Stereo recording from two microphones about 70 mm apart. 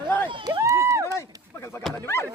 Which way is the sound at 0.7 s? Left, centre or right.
Right.